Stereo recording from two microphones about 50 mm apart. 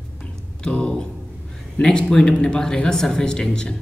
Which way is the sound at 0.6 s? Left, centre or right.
Centre.